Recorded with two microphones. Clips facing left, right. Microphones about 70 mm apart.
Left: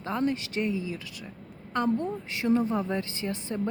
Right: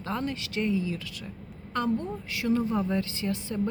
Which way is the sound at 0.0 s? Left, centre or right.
Left.